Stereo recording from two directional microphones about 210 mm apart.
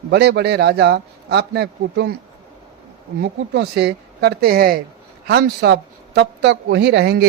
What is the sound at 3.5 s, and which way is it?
A man's voice, 55° right (ahead or behind).